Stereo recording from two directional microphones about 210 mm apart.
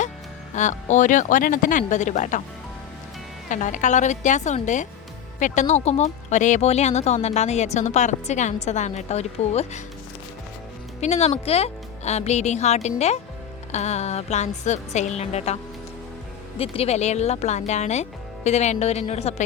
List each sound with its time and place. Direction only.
0.5 s speech: 35° left (ahead or behind)
3.5 s speech: 35° left (ahead or behind)
11.0 s speech: 30° left (ahead or behind)
16.6 s speech: 30° left (ahead or behind)